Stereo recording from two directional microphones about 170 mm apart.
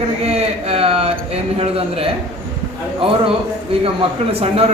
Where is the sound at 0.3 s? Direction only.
35° right (ahead or behind).